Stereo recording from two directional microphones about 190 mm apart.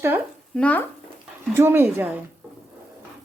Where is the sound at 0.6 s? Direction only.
5° left (ahead or behind).